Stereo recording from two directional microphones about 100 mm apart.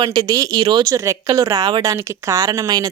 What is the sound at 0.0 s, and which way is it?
Speech, 45° right (ahead or behind).